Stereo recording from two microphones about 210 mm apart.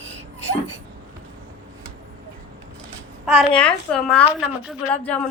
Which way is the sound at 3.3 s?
5° left (ahead or behind).